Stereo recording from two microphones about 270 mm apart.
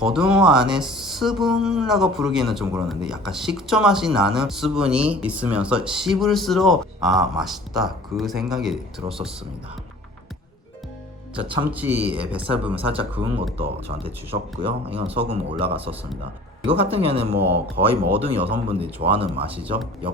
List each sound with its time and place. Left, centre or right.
0.0 s speech: centre
11.6 s speech: centre
12.0 s speech: centre
12.8 s speech: centre
13.6 s speech: right